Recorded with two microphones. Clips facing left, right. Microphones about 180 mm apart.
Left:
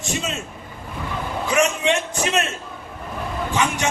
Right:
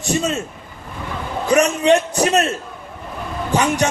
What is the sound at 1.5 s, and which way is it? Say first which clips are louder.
A man's voice: right 6 dB; 40° right (ahead or behind).